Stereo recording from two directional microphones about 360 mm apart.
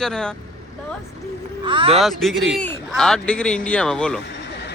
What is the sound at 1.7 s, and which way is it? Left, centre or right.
Speech, centre.